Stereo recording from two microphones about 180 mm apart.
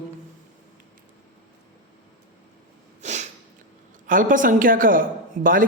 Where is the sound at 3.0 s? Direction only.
40° right (ahead or behind).